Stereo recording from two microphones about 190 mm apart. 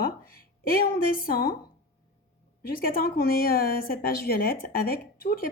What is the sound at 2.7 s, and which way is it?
A woman's voice, 50° left (ahead or behind).